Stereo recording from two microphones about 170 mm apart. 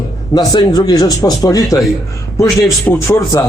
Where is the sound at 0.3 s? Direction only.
25° left (ahead or behind).